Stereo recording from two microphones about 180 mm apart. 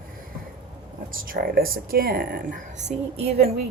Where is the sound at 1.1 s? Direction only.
50° right (ahead or behind).